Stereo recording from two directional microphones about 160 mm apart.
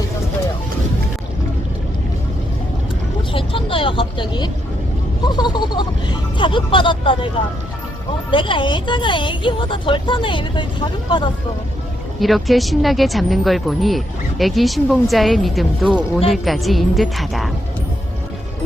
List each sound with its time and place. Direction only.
3.3 s vehicle: 35° left (ahead or behind)
5.2 s a sound: 25° left (ahead or behind)
6.3 s a woman's voice: 30° left (ahead or behind)
8.3 s a woman's voice: 30° left (ahead or behind)
12.2 s speech: centre (ahead or behind)